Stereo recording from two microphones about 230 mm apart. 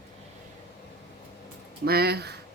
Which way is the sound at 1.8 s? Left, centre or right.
Right.